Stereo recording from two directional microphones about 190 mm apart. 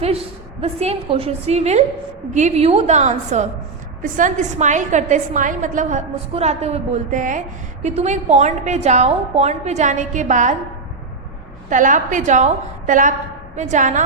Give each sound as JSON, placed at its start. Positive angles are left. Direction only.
{"t": 0.0, "sound": "a woman's voice", "side_deg": -30}
{"t": 11.7, "sound": "a woman's voice", "side_deg": -45}